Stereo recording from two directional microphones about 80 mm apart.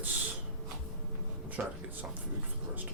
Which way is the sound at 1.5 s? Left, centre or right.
Right.